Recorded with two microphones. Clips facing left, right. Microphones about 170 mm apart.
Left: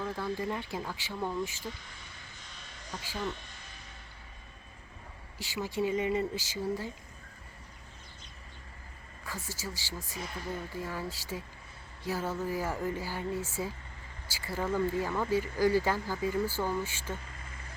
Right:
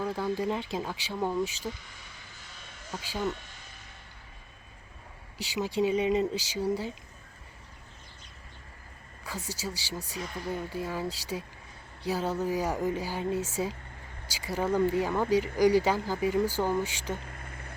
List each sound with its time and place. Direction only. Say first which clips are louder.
0.0 s speech: right 4 dB; 15° right (ahead or behind)
3.0 s speech: right 4 dB; 15° right (ahead or behind)
5.4 s speech: right 4 dB; 15° right (ahead or behind)
9.2 s speech: right 4 dB; 15° right (ahead or behind)
17.2 s vehicle: right 4 dB; 55° right (ahead or behind)